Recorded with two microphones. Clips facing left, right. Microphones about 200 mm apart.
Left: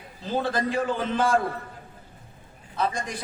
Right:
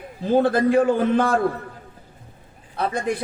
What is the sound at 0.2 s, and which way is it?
A man's voice, 55° right (ahead or behind).